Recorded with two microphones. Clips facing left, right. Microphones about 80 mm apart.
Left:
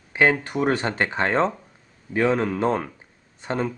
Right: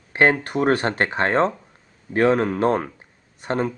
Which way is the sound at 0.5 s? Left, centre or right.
Centre.